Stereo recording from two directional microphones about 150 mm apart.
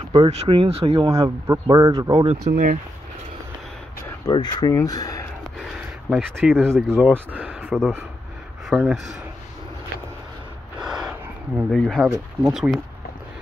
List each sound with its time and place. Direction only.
0.3 s speech: 40° right (ahead or behind)
1.1 s speech: 25° right (ahead or behind)
2.2 s speech: 55° right (ahead or behind)
4.3 s speech: 30° left (ahead or behind)
5.6 s a sound: centre (ahead or behind)
6.5 s speech: 15° right (ahead or behind)
10.8 s a sound: 5° right (ahead or behind)
11.8 s speech: centre (ahead or behind)